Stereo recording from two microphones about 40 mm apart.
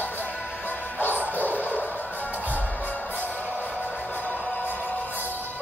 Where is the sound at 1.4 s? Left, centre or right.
Left.